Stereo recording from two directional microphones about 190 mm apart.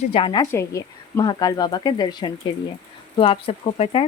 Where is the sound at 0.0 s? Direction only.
30° left (ahead or behind).